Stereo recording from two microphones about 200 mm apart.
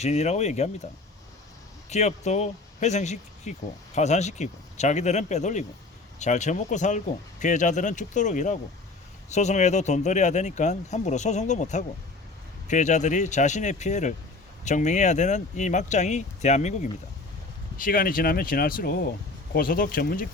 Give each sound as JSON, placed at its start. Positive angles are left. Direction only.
{"t": 0.0, "sound": "speech", "side_deg": 35}
{"t": 1.9, "sound": "speech", "side_deg": 35}